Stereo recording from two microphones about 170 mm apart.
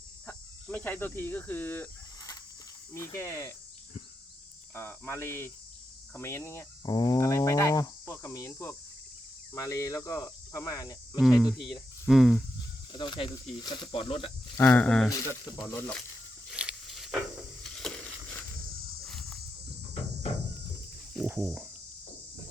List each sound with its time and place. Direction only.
0.3 s cricket: 10° left (ahead or behind)
2.9 s speech: 15° left (ahead or behind)
4.7 s speech: 15° left (ahead or behind)
11.2 s speech: 5° right (ahead or behind)
12.9 s speech: 25° left (ahead or behind)
14.6 s speech: 10° left (ahead or behind)
15.1 s speech: 25° left (ahead or behind)
15.6 s speech: 5° left (ahead or behind)
16.5 s a sound: 5° right (ahead or behind)
19.0 s cricket: centre (ahead or behind)
21.1 s cricket: centre (ahead or behind)